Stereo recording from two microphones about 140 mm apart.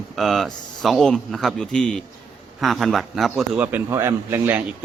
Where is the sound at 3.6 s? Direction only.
15° right (ahead or behind).